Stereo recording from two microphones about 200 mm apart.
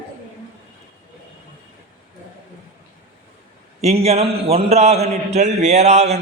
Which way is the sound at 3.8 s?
30° right (ahead or behind).